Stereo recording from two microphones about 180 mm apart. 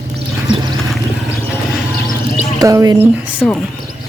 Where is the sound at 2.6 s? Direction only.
20° right (ahead or behind).